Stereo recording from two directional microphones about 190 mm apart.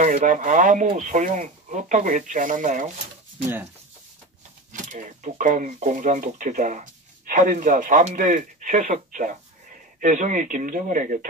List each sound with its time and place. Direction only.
0.0 s speech: 40° right (ahead or behind)
4.7 s speech: 40° right (ahead or behind)